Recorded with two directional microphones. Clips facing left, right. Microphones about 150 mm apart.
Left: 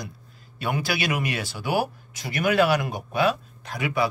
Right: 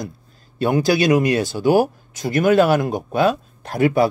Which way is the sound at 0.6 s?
40° right (ahead or behind).